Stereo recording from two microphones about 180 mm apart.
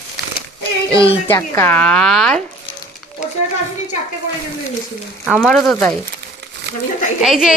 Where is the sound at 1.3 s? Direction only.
15° left (ahead or behind).